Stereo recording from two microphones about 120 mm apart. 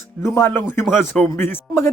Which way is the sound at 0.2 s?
20° left (ahead or behind).